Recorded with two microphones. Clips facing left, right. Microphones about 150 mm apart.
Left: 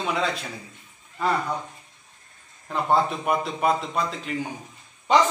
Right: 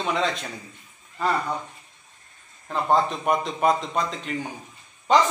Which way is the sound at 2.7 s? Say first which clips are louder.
Even; 5° left (ahead or behind).